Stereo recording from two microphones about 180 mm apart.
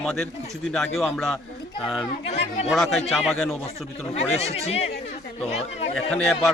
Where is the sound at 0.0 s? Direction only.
5° left (ahead or behind).